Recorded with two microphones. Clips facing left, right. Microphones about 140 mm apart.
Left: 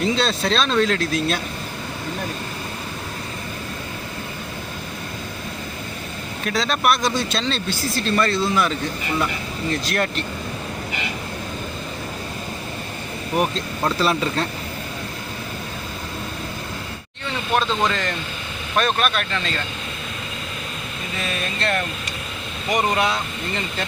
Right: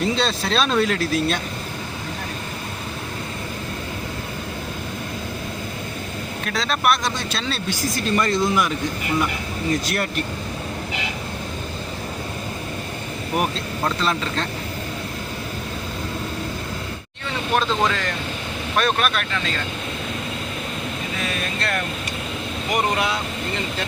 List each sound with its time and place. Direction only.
0.0 s speech: centre (ahead or behind)
6.4 s speech: centre (ahead or behind)
13.3 s speech: 5° right (ahead or behind)
14.0 s speech: 10° left (ahead or behind)
17.6 s speech: centre (ahead or behind)
22.7 s speech: 5° right (ahead or behind)